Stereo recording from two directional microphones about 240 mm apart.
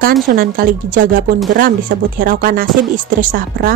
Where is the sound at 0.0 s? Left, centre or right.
Right.